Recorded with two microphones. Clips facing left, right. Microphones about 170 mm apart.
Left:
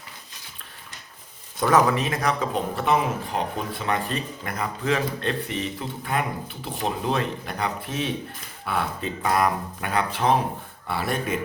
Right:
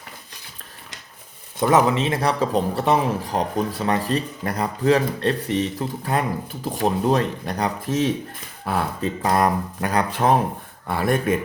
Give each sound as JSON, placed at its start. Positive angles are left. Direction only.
{"t": 1.5, "sound": "speech", "side_deg": -20}